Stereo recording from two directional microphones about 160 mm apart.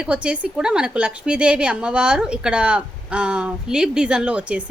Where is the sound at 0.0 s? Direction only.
5° right (ahead or behind).